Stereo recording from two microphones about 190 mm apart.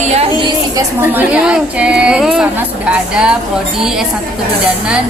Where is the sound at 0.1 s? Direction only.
30° right (ahead or behind).